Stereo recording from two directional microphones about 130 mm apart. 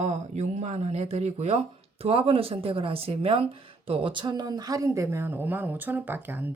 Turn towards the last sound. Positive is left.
turn(degrees=-15)  # may be behind; listen again after turning